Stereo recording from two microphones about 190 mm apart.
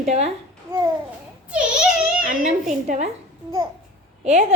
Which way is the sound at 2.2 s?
40° right (ahead or behind).